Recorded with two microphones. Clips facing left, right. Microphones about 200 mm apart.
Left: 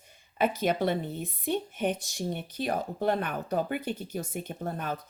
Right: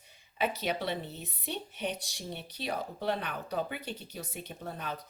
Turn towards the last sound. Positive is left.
turn(degrees=50)  # may be behind; listen again after turning